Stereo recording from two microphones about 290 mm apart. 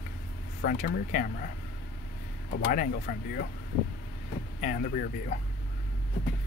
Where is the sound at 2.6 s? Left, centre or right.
Left.